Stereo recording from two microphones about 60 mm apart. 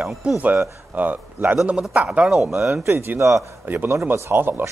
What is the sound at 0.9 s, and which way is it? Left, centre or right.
Speech, right.